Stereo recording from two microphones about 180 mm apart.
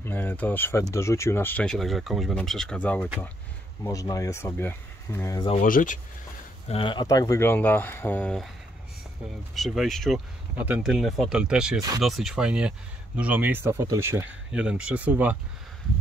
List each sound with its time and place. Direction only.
0.0 s speech: 10° left (ahead or behind)
3.8 s speech: 20° left (ahead or behind)
5.6 s speech: 45° left (ahead or behind)
6.7 s speech: 30° left (ahead or behind); by 8.5 s 5° left (ahead or behind)
9.6 s speech: centre (ahead or behind)